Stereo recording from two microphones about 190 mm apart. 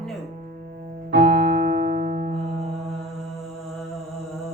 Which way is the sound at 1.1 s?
60° right (ahead or behind).